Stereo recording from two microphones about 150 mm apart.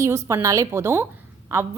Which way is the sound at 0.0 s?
20° right (ahead or behind).